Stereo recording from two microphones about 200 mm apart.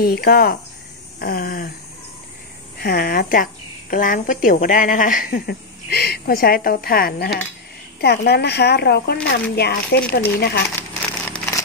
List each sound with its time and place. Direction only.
0.0 s speech: 50° left (ahead or behind)
2.8 s speech: 50° left (ahead or behind)
10.8 s crumpling: 10° left (ahead or behind)